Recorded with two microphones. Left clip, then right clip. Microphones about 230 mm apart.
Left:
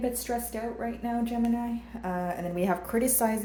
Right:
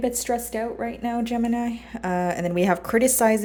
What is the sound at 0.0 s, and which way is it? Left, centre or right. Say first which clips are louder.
A woman's voice: right 6 dB; right.